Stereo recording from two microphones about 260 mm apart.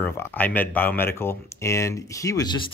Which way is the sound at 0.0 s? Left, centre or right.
Centre.